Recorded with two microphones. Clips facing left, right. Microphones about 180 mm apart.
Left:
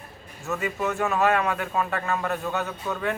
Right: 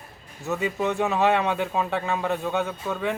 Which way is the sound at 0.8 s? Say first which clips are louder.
Right 1 dB; 15° right (ahead or behind).